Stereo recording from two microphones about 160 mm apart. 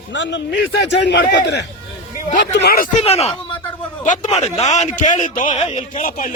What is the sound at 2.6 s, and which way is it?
Speech, 75° left (ahead or behind).